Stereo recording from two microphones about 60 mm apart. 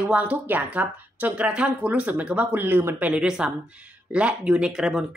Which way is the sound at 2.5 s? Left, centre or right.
Right.